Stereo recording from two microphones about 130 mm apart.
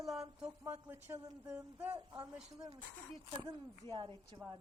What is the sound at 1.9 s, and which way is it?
Speech, 25° right (ahead or behind).